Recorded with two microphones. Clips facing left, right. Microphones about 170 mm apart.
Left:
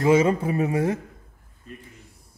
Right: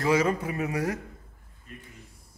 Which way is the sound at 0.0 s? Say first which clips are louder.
Left 6 dB; 25° left (ahead or behind).